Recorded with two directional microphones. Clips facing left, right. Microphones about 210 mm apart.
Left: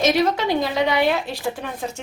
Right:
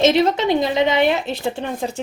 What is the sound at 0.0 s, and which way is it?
Speech, 25° right (ahead or behind).